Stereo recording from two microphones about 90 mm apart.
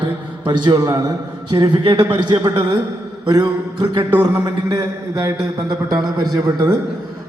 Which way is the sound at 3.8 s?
55° right (ahead or behind).